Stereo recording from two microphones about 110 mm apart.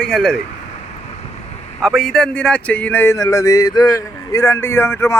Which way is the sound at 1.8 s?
Centre (ahead or behind).